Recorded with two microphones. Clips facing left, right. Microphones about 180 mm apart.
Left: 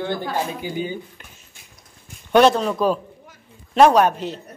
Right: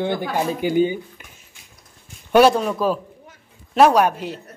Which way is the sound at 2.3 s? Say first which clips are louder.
Right 1 dB; 10° right (ahead or behind).